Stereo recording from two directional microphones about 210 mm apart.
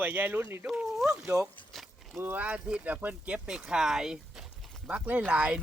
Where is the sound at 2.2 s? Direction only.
10° right (ahead or behind).